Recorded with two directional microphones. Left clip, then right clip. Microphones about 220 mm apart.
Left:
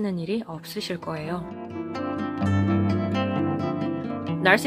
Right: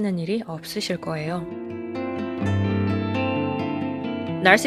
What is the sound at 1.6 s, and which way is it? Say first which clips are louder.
Music: right 1 dB; 45° left (ahead or behind).